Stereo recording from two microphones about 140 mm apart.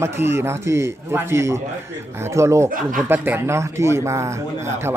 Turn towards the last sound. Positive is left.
turn(degrees=-20)  # may be behind; listen again after turning